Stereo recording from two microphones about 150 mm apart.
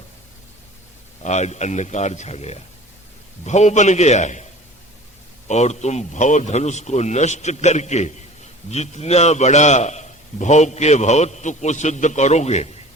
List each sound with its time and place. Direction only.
1.2 s a man's voice: 50° left (ahead or behind)
5.5 s a man's voice: 50° left (ahead or behind)